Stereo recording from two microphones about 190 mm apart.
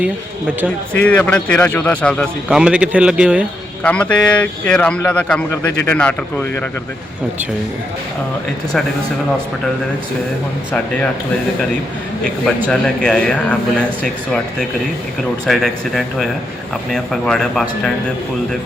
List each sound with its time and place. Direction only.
1.0 s speech: 5° left (ahead or behind)
2.5 s speech: 5° right (ahead or behind)
3.8 s speech: 5° left (ahead or behind)
12.6 s speech: 5° left (ahead or behind)
15.4 s speech: centre (ahead or behind)